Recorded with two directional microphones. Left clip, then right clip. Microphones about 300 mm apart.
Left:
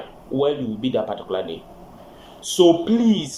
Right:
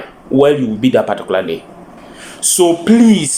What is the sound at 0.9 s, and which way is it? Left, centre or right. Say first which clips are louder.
Speech: right 10 dB; centre.